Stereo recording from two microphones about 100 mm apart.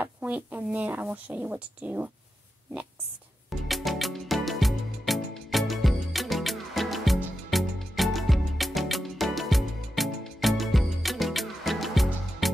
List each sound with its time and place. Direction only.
0.0 s speech: 15° right (ahead or behind)
3.6 s music: centre (ahead or behind)